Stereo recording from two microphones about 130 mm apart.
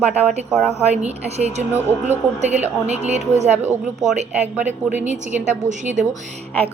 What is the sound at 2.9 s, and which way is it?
Speech, 60° right (ahead or behind).